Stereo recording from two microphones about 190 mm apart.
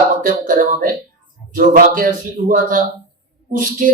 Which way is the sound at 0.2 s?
45° right (ahead or behind).